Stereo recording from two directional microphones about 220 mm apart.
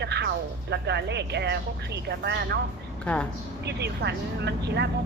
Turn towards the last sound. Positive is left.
turn(degrees=-50)  # may be behind; listen again after turning